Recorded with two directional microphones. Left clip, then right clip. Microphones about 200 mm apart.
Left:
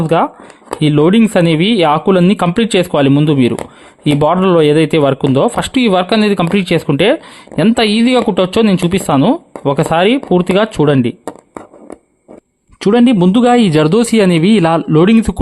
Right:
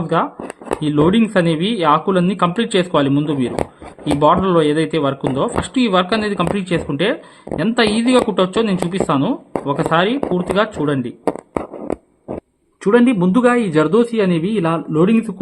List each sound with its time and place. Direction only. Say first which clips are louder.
0.1 s speech: left 5 dB; 50° left (ahead or behind)
11.3 s a sound: right 7 dB; 20° right (ahead or behind)
12.8 s speech: left 3 dB; 55° left (ahead or behind)